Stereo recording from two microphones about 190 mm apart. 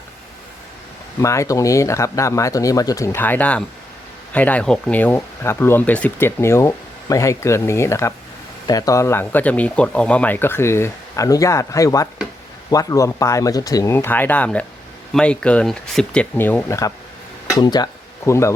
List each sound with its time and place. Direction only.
1.2 s speech: 15° left (ahead or behind)